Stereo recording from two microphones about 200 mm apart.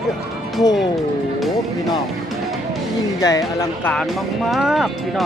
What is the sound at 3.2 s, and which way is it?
Speech, 15° left (ahead or behind).